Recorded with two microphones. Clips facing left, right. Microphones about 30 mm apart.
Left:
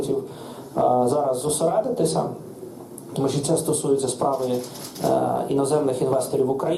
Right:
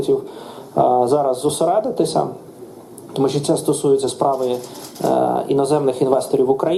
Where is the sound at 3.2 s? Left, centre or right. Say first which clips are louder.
Right 5 dB; right.